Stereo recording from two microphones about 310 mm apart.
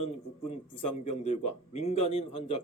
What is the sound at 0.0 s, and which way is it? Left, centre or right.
Speech, centre.